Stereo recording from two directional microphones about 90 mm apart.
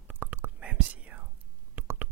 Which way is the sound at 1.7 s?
20° right (ahead or behind).